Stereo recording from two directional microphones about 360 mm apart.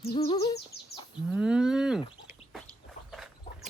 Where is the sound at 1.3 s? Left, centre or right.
Centre.